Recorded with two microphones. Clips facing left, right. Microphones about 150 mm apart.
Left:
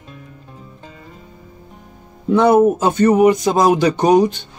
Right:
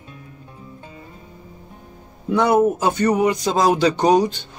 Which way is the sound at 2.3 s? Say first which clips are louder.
Left 4 dB; 20° left (ahead or behind).